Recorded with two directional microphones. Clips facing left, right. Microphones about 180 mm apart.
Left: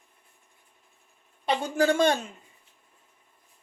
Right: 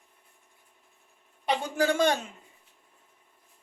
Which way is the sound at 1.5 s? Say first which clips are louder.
Left 2 dB; 15° right (ahead or behind).